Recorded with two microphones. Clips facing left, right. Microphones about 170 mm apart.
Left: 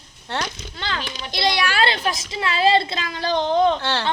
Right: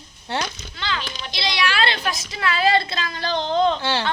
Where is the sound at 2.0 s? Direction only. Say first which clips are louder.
Left 1 dB; 25° left (ahead or behind).